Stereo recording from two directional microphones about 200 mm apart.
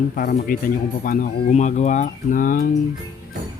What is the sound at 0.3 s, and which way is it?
Speech, 45° left (ahead or behind).